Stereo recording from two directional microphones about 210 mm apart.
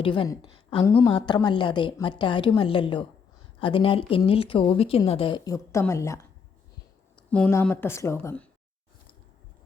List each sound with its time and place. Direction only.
0.0 s a woman's voice: 25° left (ahead or behind)
7.2 s speech: 5° left (ahead or behind)